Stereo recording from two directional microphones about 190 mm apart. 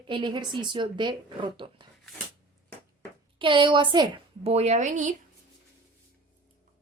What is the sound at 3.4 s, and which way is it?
A woman's voice, 25° right (ahead or behind).